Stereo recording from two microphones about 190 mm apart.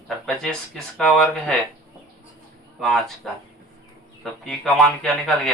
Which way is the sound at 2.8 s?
Centre (ahead or behind).